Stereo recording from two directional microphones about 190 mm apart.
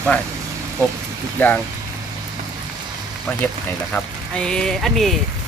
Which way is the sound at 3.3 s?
15° left (ahead or behind).